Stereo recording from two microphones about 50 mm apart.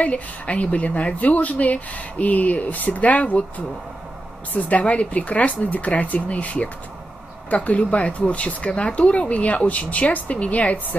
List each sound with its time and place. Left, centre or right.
0.0 s speech: left
4.6 s speech: left